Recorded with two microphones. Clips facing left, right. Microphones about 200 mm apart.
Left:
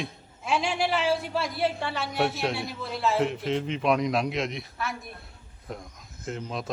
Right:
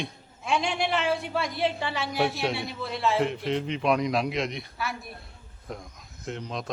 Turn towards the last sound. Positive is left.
turn(degrees=0)  # may be behind; listen again after turning